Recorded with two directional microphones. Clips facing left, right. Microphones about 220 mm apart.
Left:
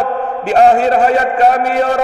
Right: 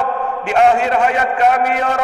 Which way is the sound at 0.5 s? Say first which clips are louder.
Left 4 dB; 35° left (ahead or behind).